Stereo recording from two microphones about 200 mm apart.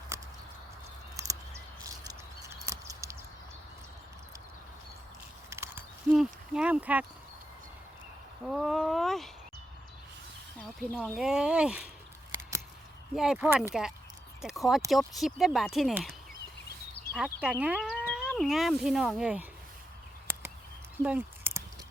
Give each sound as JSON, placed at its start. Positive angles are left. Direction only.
{"t": 1.1, "sound": "a sound", "side_deg": -15}
{"t": 5.5, "sound": "horse", "side_deg": -10}
{"t": 8.4, "sound": "speech", "side_deg": 0}
{"t": 10.6, "sound": "speech", "side_deg": 0}
{"t": 13.1, "sound": "speech", "side_deg": 0}
{"t": 17.2, "sound": "speech", "side_deg": -5}
{"t": 21.0, "sound": "a sound", "side_deg": -5}